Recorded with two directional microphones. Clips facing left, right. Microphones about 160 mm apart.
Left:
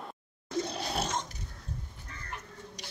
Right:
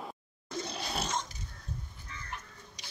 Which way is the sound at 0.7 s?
50° left (ahead or behind).